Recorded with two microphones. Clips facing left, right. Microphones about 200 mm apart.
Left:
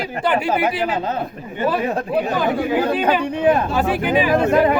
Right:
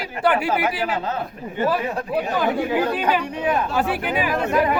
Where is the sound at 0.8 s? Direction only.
20° left (ahead or behind).